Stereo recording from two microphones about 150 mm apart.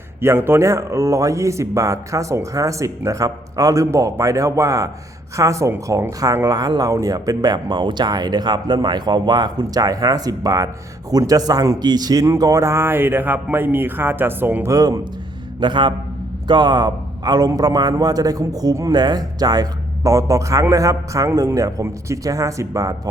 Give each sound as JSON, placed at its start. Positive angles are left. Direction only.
{"t": 0.2, "sound": "a man's voice", "side_deg": -15}